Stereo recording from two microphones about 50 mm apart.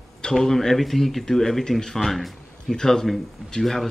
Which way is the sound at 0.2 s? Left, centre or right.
Centre.